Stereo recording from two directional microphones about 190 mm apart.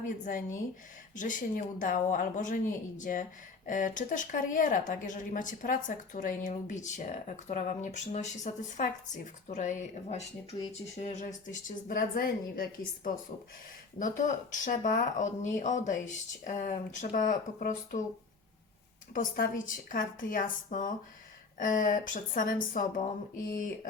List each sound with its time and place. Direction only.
0.0 s speech: 45° left (ahead or behind)
14.0 s speech: 40° left (ahead or behind)
19.1 s speech: 45° left (ahead or behind)